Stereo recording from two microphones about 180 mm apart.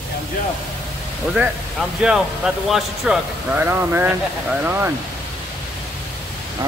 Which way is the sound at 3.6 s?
10° right (ahead or behind).